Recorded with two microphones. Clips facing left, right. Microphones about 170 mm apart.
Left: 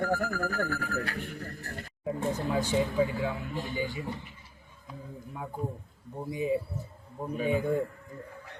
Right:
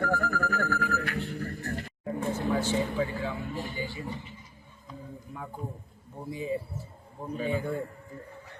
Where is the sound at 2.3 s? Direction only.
15° left (ahead or behind).